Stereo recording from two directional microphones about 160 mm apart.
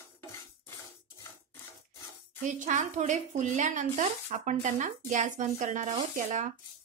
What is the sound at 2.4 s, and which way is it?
Speech, 50° right (ahead or behind).